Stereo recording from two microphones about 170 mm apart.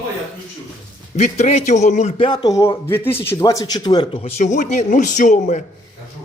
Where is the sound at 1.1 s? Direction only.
40° left (ahead or behind).